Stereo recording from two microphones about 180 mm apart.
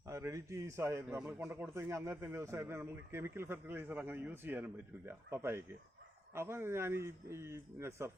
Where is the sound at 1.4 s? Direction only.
15° right (ahead or behind).